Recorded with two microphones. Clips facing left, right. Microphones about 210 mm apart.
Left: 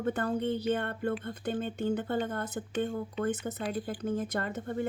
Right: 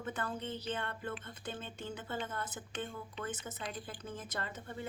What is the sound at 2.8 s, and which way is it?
Speech, 45° left (ahead or behind).